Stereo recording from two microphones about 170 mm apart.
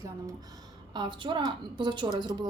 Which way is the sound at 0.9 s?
25° right (ahead or behind).